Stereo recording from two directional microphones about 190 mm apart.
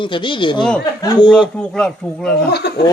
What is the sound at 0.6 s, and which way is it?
Speech, 5° left (ahead or behind).